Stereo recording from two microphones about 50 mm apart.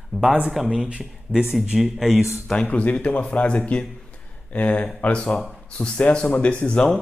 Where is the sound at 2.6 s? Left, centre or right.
Left.